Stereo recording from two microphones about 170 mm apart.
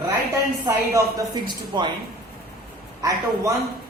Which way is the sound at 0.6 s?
20° right (ahead or behind).